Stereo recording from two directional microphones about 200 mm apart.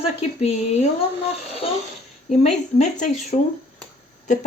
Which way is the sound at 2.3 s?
35° left (ahead or behind).